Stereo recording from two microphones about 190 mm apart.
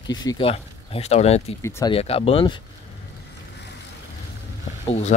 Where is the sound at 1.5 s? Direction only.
15° left (ahead or behind).